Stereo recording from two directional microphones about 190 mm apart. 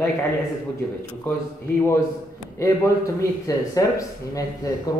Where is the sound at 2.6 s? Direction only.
15° left (ahead or behind).